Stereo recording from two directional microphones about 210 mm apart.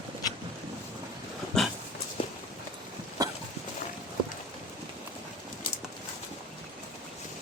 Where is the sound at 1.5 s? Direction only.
5° left (ahead or behind).